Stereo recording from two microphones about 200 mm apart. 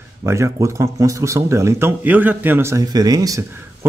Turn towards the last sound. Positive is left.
turn(degrees=-15)  # may be behind; listen again after turning